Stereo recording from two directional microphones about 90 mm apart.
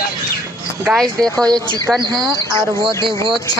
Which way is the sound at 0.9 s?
5° left (ahead or behind).